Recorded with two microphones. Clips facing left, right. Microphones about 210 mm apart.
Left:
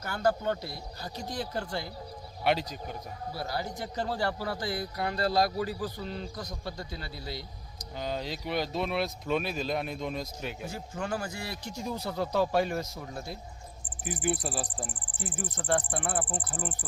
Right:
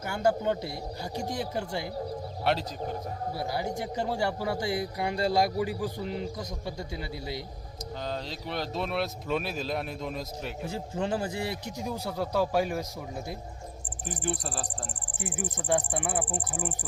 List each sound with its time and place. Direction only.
0.0 s speech: 20° right (ahead or behind)
2.4 s speech: centre (ahead or behind)
3.3 s speech: 20° right (ahead or behind)
8.0 s speech: 5° left (ahead or behind)
10.7 s a man's voice: 25° right (ahead or behind)
11.9 s speech: 10° right (ahead or behind)
14.1 s speech: 5° left (ahead or behind)
15.6 s speech: 10° right (ahead or behind)